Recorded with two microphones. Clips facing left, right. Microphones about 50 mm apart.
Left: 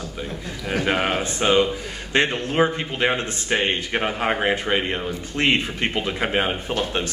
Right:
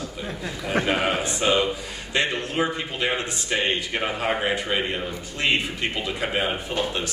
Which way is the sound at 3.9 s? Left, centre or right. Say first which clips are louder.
Left 2 dB; left.